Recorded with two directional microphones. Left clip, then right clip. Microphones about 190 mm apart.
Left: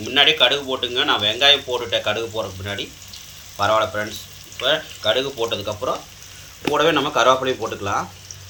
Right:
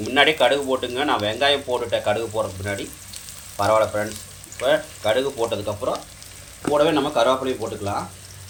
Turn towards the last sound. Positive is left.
turn(degrees=-5)  # may be behind; listen again after turning